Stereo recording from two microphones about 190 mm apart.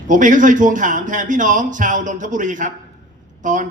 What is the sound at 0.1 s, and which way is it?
A man's voice, 40° right (ahead or behind).